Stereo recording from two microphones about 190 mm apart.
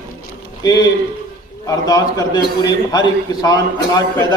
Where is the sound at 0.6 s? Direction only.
20° left (ahead or behind).